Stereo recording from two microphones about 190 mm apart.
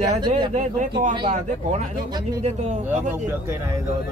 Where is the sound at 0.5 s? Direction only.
40° right (ahead or behind).